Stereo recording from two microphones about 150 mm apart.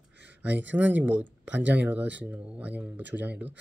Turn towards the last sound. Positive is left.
turn(degrees=-10)  # may be behind; listen again after turning